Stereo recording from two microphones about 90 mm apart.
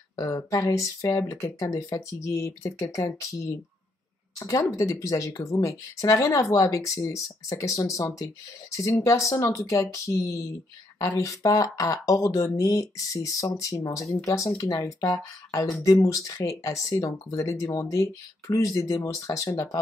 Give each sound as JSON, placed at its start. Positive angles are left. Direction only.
{"t": 0.1, "sound": "speech", "side_deg": 40}